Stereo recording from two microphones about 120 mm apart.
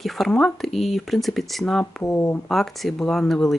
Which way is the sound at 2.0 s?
20° left (ahead or behind).